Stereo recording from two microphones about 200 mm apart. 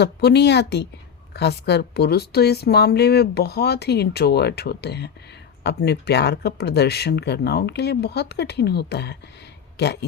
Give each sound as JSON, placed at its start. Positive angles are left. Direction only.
{"t": 0.0, "sound": "a woman's voice", "side_deg": 55}